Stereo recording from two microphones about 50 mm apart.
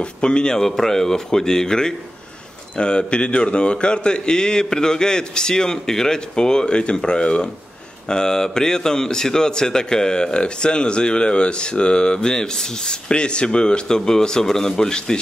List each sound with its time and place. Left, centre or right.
0.0 s a man's voice: centre